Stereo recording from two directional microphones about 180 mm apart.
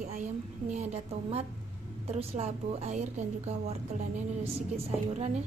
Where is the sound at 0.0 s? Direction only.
40° right (ahead or behind).